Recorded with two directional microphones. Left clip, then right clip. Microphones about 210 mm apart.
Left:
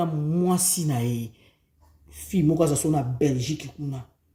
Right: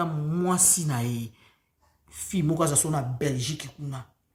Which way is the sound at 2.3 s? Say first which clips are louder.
Left 5 dB; 5° right (ahead or behind).